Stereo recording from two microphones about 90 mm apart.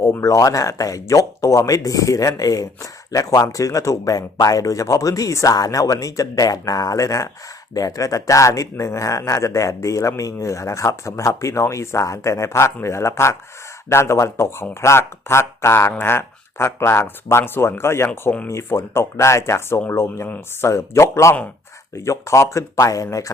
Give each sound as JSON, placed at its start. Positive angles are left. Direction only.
{"t": 0.0, "sound": "speech", "side_deg": 35}